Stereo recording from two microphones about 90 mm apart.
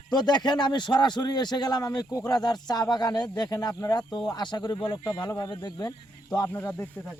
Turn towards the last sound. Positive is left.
turn(degrees=20)  # may be behind; listen again after turning